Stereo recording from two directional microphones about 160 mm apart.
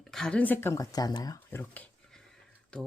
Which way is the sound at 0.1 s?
5° left (ahead or behind).